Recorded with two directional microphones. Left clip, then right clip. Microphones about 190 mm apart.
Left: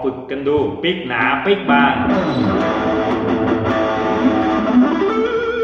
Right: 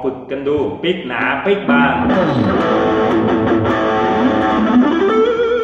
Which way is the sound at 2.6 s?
45° right (ahead or behind).